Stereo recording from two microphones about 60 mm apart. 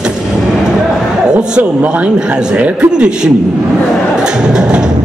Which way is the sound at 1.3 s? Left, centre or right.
Centre.